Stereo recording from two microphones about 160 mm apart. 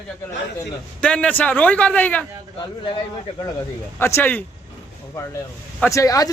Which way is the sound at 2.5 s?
30° left (ahead or behind).